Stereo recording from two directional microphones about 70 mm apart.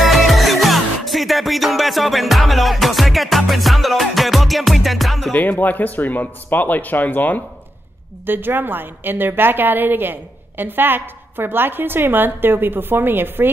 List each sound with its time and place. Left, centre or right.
0.0 s music: centre
5.3 s speech: left
8.3 s a woman's voice: right